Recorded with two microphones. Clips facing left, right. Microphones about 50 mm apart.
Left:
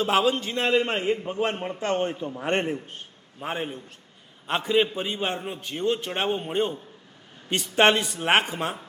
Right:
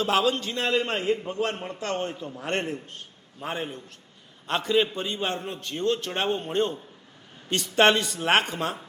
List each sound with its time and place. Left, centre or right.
0.0 s a man's voice: centre